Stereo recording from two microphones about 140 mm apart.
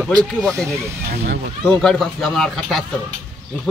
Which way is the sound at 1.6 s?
5° left (ahead or behind).